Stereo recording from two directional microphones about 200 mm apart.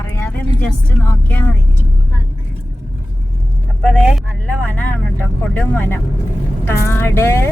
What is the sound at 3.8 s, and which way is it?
Speech, centre (ahead or behind).